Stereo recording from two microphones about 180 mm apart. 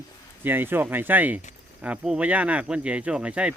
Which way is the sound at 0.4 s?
10° right (ahead or behind).